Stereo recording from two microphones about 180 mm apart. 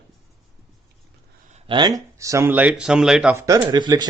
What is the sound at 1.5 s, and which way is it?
A man's voice, 30° right (ahead or behind).